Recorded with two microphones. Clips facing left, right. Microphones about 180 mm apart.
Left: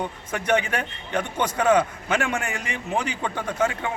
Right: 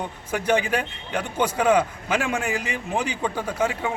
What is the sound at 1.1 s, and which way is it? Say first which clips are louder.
A man's voice: right 1 dB; 10° right (ahead or behind).